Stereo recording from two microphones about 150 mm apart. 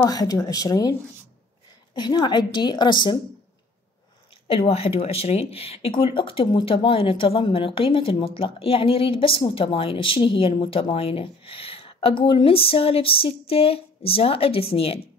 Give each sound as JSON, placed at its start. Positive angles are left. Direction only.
{"t": 0.0, "sound": "a woman's voice", "side_deg": 25}
{"t": 2.0, "sound": "a woman's voice", "side_deg": 30}
{"t": 4.5, "sound": "speech", "side_deg": 40}